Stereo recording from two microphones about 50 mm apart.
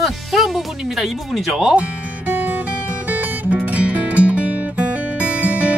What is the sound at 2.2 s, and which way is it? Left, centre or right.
Music, right.